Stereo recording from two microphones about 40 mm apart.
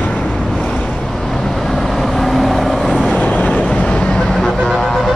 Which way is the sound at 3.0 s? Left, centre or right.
Left.